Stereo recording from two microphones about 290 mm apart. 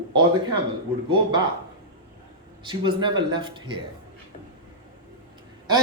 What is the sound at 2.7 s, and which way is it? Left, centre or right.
Speech, centre.